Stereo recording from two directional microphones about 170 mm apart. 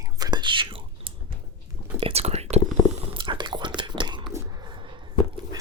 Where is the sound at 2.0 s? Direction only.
35° right (ahead or behind).